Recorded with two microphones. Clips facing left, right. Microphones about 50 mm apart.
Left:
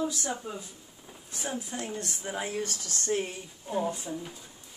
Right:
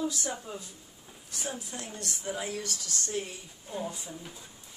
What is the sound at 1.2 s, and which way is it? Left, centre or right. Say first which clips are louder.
Speech: left 3 dB; left.